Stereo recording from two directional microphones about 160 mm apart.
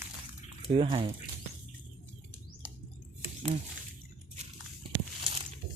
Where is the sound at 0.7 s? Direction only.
35° right (ahead or behind).